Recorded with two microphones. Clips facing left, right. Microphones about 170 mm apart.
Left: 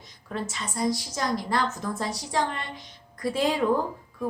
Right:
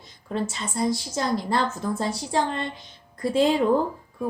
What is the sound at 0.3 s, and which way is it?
A woman's voice, 30° right (ahead or behind).